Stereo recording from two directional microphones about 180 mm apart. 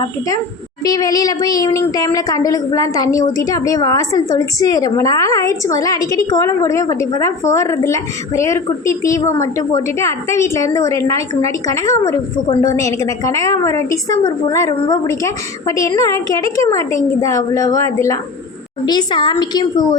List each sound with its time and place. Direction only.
0.9 s a woman's voice: 20° left (ahead or behind)